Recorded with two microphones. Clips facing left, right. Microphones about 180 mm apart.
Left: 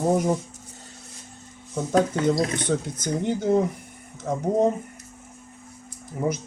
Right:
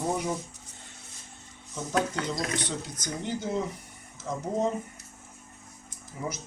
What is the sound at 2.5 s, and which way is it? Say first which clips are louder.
Speech: left 8 dB; 50° left (ahead or behind).